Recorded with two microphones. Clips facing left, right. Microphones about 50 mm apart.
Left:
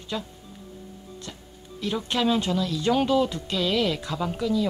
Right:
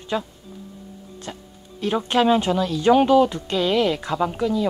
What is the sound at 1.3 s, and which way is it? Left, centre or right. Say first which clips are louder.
Speech: right 5 dB; right.